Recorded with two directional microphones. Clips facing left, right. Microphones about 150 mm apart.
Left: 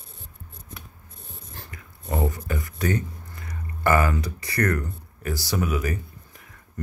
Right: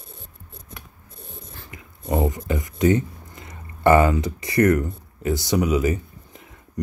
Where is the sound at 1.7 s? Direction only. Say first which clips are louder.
Right 5 dB; 20° right (ahead or behind).